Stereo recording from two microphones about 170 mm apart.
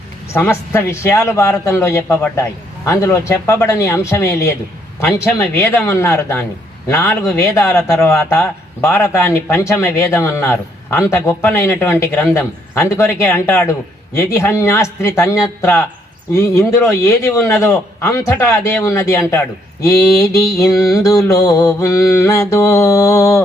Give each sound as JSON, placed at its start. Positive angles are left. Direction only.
{"t": 0.3, "sound": "speech", "side_deg": 15}